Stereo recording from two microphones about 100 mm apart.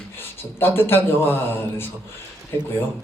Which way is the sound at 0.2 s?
20° left (ahead or behind).